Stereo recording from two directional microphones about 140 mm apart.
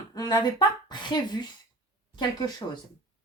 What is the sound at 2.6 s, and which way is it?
Speech, 25° left (ahead or behind).